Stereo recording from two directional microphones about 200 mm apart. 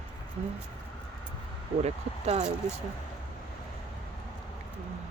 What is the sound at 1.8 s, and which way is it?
Speech, 30° right (ahead or behind).